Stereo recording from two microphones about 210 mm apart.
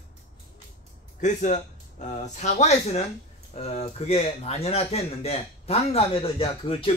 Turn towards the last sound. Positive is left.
turn(degrees=25)  # may be behind; listen again after turning